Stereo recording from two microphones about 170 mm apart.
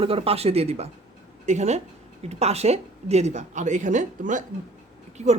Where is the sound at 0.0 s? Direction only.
35° right (ahead or behind).